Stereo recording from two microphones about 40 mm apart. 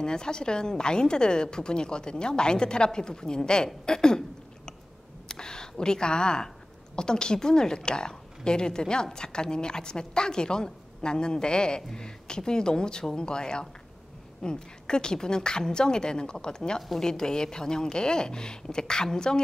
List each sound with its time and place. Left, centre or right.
0.0 s a woman's voice: centre
5.3 s a woman's voice: centre